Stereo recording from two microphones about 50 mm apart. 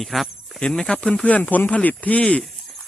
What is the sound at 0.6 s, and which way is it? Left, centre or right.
Speech, centre.